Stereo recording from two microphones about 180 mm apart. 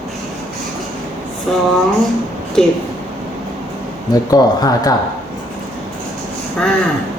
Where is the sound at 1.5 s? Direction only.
Centre (ahead or behind).